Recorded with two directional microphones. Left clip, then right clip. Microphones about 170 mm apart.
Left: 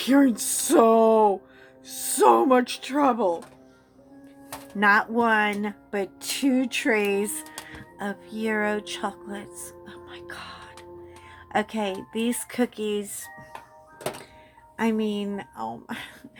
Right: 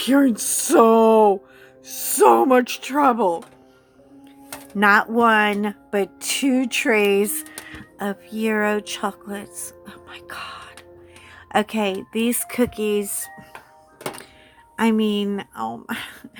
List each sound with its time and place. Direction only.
0.0 s speech: 25° right (ahead or behind)
4.8 s speech: 35° right (ahead or behind)
14.8 s speech: 40° right (ahead or behind)